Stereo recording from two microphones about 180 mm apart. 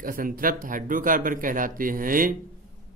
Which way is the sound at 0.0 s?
50° right (ahead or behind).